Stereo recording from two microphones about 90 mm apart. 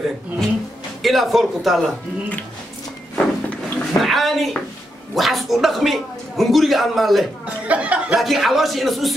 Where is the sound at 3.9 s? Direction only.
Centre (ahead or behind).